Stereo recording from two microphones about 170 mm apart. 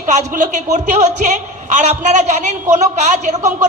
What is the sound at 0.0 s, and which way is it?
A man's voice, 45° right (ahead or behind).